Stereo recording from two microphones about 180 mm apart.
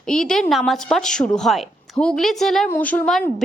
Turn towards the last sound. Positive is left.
turn(degrees=5)  # may be behind; listen again after turning